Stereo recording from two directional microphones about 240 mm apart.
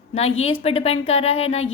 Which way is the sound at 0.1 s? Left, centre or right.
Left.